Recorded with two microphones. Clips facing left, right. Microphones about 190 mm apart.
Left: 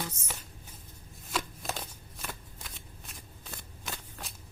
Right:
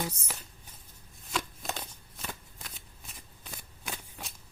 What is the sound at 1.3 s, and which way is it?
Shuffling cards, centre (ahead or behind).